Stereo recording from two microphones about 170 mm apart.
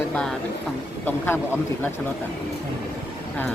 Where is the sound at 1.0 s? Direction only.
15° left (ahead or behind).